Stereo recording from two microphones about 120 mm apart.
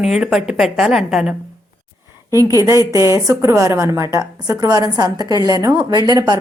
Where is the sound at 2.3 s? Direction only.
30° right (ahead or behind).